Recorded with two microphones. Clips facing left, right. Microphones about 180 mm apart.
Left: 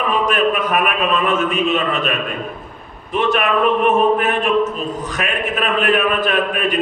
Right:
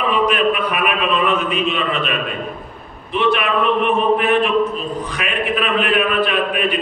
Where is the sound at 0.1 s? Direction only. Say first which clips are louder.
Even; 45° left (ahead or behind).